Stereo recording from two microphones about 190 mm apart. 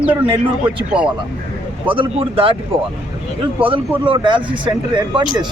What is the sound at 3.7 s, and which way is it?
Speech, 25° right (ahead or behind).